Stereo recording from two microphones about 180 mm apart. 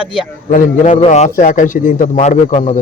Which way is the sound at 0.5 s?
45° left (ahead or behind).